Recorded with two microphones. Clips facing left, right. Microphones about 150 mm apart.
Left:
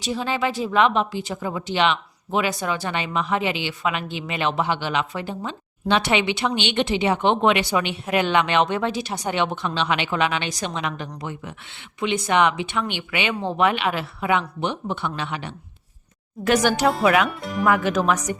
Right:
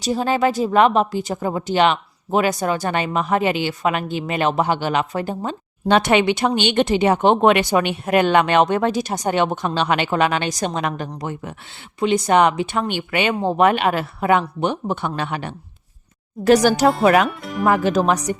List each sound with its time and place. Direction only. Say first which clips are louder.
0.0 s speech: right 6 dB; 45° right (ahead or behind)
16.4 s speech: right 5 dB; 35° right (ahead or behind)
17.2 s speech: right 2 dB; centre (ahead or behind)
17.7 s speech: right 3 dB; 35° right (ahead or behind)